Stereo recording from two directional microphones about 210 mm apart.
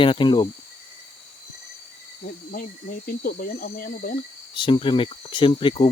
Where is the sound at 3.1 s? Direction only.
45° left (ahead or behind).